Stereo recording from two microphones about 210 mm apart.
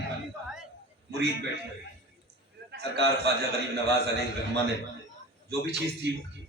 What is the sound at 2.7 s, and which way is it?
Speech, 55° right (ahead or behind).